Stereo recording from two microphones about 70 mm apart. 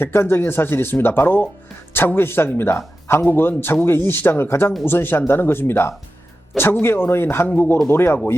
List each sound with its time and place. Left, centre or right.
0.0 s speech: left